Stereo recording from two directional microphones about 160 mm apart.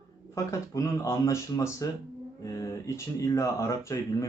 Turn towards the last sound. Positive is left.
turn(degrees=20)  # may be behind; listen again after turning